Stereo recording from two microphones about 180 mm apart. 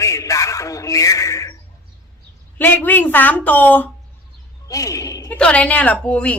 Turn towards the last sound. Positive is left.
turn(degrees=5)  # may be behind; listen again after turning